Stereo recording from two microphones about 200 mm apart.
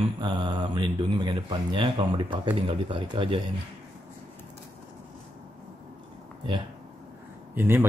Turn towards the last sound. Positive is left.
turn(degrees=-10)  # may be behind; listen again after turning